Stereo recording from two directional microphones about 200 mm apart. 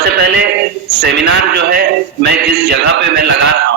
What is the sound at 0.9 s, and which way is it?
A man's voice, 55° right (ahead or behind).